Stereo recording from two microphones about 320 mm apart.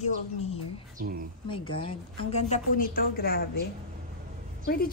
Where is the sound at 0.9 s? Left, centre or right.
Right.